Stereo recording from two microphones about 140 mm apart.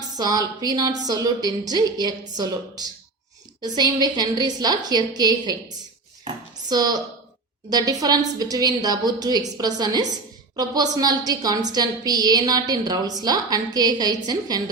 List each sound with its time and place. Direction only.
0.2 s a woman's voice: 30° right (ahead or behind)
6.7 s a woman's voice: 30° right (ahead or behind)